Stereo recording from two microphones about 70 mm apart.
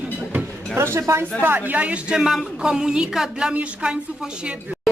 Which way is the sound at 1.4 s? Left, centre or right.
Right.